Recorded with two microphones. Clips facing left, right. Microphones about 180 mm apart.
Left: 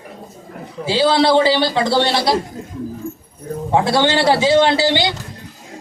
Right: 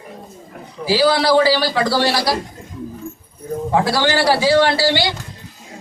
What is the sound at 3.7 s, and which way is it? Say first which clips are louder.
A man's voice: left 2 dB; 25° left (ahead or behind).